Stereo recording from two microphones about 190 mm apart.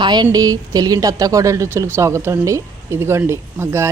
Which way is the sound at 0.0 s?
20° right (ahead or behind).